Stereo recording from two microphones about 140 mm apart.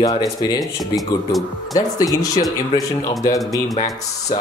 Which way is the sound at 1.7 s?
25° left (ahead or behind).